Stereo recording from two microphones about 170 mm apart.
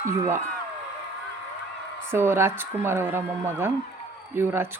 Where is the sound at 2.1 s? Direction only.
15° right (ahead or behind).